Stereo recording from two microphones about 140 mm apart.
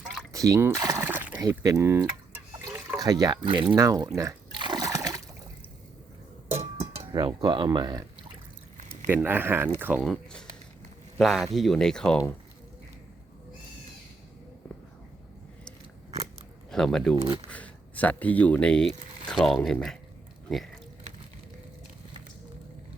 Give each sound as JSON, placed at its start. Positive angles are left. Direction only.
{"t": 0.0, "sound": "a sound", "side_deg": 0}
{"t": 0.3, "sound": "a sound", "side_deg": -25}
{"t": 1.4, "sound": "speech", "side_deg": -25}
{"t": 3.8, "sound": "water", "side_deg": -25}
{"t": 6.5, "sound": "cowbell", "side_deg": -50}
{"t": 7.1, "sound": "speech", "side_deg": -30}
{"t": 9.0, "sound": "speech", "side_deg": -15}
{"t": 10.0, "sound": "speech", "side_deg": 5}
{"t": 16.7, "sound": "speech", "side_deg": 5}